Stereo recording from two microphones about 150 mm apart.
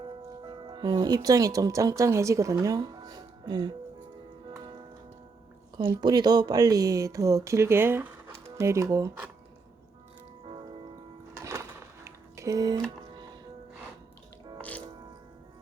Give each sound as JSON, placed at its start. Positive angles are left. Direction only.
{"t": 0.4, "sound": "speech", "side_deg": -30}
{"t": 5.8, "sound": "speech", "side_deg": -25}
{"t": 11.3, "sound": "a sound", "side_deg": -20}